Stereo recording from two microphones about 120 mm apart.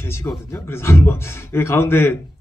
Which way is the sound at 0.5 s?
20° left (ahead or behind).